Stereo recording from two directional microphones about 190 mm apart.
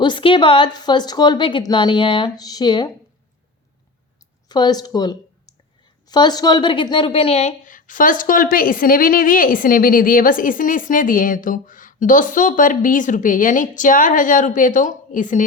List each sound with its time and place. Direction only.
0.0 s a woman's voice: 25° left (ahead or behind)
4.4 s a woman's voice: 20° left (ahead or behind); by 15.4 s 40° left (ahead or behind)